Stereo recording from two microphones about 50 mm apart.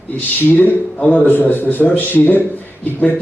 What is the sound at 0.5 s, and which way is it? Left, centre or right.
Speech, left.